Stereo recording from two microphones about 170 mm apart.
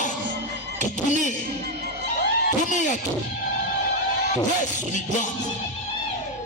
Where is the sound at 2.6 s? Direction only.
45° left (ahead or behind).